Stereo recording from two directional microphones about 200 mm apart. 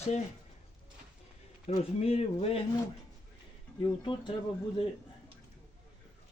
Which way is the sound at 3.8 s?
25° left (ahead or behind).